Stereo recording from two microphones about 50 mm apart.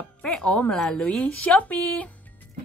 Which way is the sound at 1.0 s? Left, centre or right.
Left.